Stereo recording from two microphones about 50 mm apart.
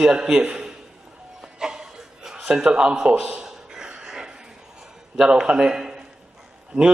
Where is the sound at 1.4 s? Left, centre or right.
Centre.